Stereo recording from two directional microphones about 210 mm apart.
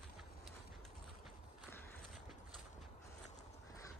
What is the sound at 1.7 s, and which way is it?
Clip-clop, 5° left (ahead or behind).